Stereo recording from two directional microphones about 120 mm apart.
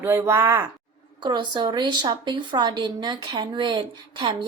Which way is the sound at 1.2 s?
40° right (ahead or behind).